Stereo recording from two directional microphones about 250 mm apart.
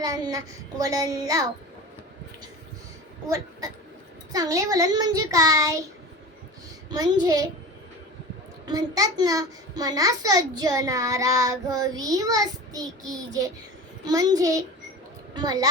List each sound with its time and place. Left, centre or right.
0.0 s a child's voice: centre
3.2 s a child's voice: centre
6.9 s a child's voice: centre
8.6 s a child's voice: centre